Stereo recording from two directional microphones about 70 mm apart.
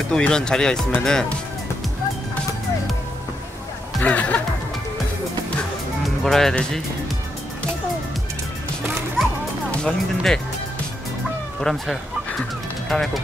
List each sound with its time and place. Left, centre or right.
0.1 s speech: centre
4.0 s speech: left
6.0 s music: centre
9.8 s speech: centre
11.6 s speech: centre